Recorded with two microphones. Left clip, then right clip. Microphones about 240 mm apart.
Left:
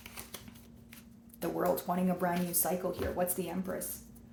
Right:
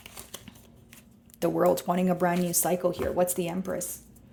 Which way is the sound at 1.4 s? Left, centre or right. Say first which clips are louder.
Right 8 dB; right.